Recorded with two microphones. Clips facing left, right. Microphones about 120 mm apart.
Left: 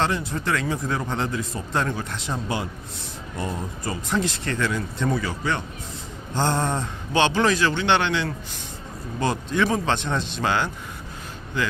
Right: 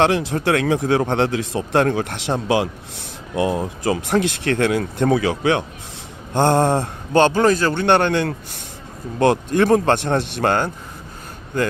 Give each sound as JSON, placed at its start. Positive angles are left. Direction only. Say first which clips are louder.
{"t": 0.0, "sound": "speech", "louder": "right 7 dB", "side_deg": -80}
{"t": 3.3, "sound": "speech", "louder": "right 10 dB", "side_deg": -75}
{"t": 6.3, "sound": "a man's voice", "louder": "right 8 dB", "side_deg": -60}
{"t": 9.1, "sound": "a man's voice", "louder": "right 7 dB", "side_deg": -65}